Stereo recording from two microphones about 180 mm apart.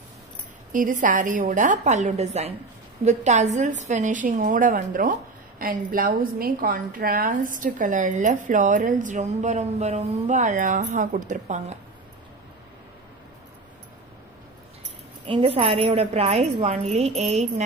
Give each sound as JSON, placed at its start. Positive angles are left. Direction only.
{"t": 0.7, "sound": "a woman's voice", "side_deg": -45}
{"t": 15.2, "sound": "a woman's voice", "side_deg": -30}